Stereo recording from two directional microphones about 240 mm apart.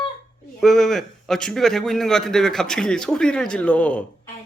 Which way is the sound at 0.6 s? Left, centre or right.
Centre.